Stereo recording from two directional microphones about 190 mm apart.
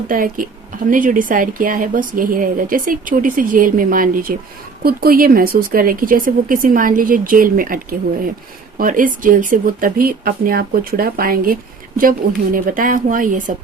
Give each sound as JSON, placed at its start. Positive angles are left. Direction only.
{"t": 0.1, "sound": "a woman's voice", "side_deg": -45}